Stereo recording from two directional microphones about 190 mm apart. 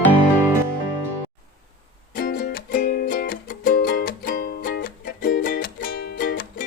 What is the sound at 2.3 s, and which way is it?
Music, 55° left (ahead or behind).